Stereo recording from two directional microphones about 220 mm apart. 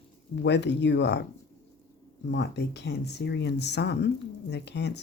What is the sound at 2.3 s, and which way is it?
Speech, 50° left (ahead or behind).